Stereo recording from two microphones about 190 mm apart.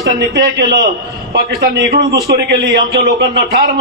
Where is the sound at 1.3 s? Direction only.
55° right (ahead or behind).